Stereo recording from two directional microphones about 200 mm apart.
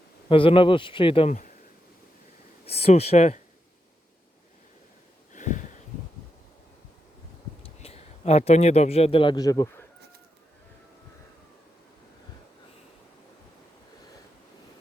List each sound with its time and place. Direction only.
0.3 s speech: 25° left (ahead or behind)
2.6 s speech: 30° left (ahead or behind)
5.3 s a sound: 40° left (ahead or behind)
7.6 s speech: 30° left (ahead or behind)